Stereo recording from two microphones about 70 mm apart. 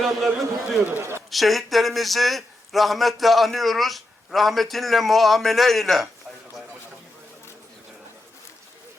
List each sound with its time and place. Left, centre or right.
0.0 s speech: centre
0.9 s a man's voice: right
1.3 s speech: centre